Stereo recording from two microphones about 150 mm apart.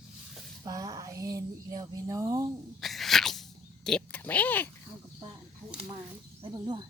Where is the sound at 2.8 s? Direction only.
Centre (ahead or behind).